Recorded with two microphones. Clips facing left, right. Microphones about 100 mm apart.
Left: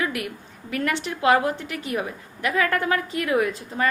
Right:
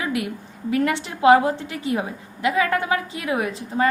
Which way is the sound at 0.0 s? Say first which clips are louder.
Right 2 dB; 20° right (ahead or behind).